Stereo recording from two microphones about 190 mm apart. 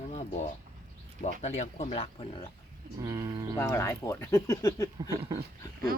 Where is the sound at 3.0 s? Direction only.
20° right (ahead or behind).